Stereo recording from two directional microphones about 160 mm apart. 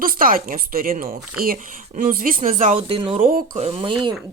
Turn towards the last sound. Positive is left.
turn(degrees=-30)  # may be behind; listen again after turning